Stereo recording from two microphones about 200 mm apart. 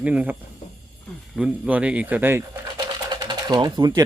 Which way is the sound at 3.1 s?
20° right (ahead or behind).